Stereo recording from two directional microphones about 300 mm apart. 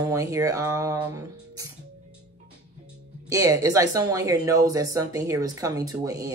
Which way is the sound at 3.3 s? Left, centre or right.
Centre.